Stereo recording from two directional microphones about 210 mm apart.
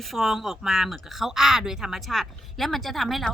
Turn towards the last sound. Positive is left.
turn(degrees=0)  # may be behind; listen again after turning